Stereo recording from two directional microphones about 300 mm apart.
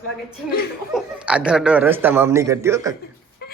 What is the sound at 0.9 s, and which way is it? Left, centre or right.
Speech, centre.